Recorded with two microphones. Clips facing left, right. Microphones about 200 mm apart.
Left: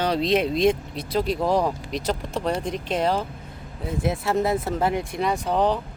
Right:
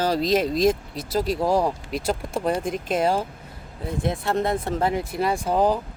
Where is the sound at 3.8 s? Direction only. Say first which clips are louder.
Even; centre (ahead or behind).